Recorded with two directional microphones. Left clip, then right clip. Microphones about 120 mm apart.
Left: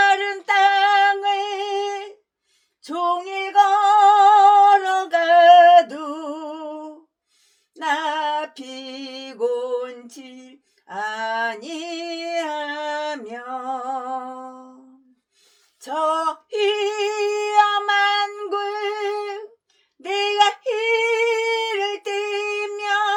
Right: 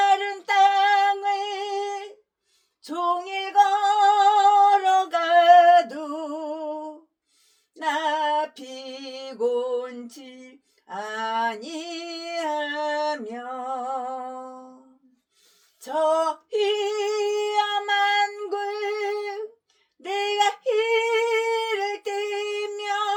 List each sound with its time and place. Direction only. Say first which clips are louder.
0.0 s singing: left 3 dB; 90° left
7.8 s a sound: left 2 dB; 90° left
15.8 s singing: left 1 dB; 90° left
20.0 s female singing: left 5 dB; 85° left